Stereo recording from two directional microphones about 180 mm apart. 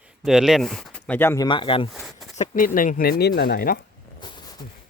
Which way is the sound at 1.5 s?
30° left (ahead or behind).